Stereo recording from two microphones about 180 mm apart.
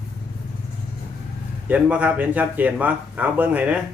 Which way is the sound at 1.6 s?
10° right (ahead or behind).